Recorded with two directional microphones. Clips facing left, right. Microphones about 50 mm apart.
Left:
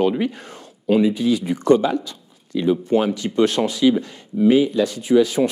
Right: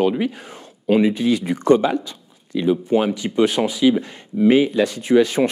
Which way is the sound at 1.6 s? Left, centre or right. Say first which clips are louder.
Right 1 dB; right.